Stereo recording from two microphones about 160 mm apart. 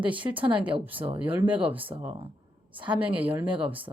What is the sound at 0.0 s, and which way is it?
Speech, 30° right (ahead or behind).